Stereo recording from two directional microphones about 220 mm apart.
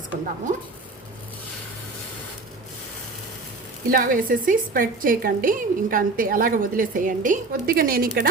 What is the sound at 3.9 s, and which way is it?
A woman's voice, 40° right (ahead or behind).